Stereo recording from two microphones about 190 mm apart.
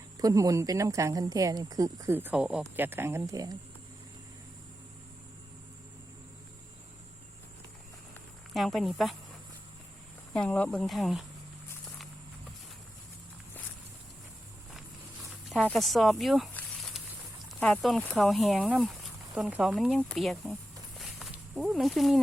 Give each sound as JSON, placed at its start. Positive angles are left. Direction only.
{"t": 0.2, "sound": "speech", "side_deg": -20}
{"t": 8.5, "sound": "speech", "side_deg": 0}
{"t": 10.3, "sound": "speech", "side_deg": 5}
{"t": 15.4, "sound": "speech", "side_deg": 0}
{"t": 16.6, "sound": "snake", "side_deg": 0}
{"t": 17.6, "sound": "speech", "side_deg": 5}
{"t": 21.0, "sound": "snake", "side_deg": 0}